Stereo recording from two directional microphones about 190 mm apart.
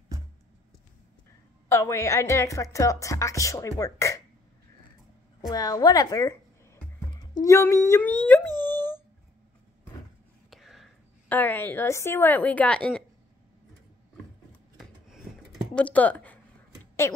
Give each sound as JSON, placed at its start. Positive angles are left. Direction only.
{"t": 1.7, "sound": "a woman's voice", "side_deg": 15}
{"t": 5.5, "sound": "a woman's voice", "side_deg": 20}
{"t": 8.6, "sound": "dog", "side_deg": 10}
{"t": 10.5, "sound": "whispering", "side_deg": 0}
{"t": 11.3, "sound": "a woman's voice", "side_deg": 10}
{"t": 14.8, "sound": "a sound", "side_deg": 0}